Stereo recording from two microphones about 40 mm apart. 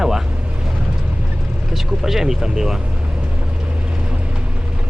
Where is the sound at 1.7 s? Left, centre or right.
Centre.